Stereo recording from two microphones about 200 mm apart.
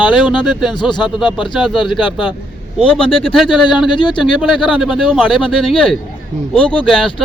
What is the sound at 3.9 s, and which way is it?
Speech, 25° left (ahead or behind).